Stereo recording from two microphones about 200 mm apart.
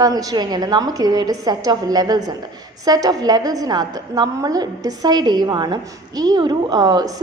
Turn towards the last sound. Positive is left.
turn(degrees=-20)  # may be behind; listen again after turning